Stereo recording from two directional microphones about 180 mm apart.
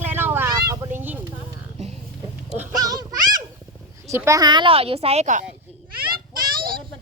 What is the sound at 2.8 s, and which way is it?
Speech, 20° right (ahead or behind).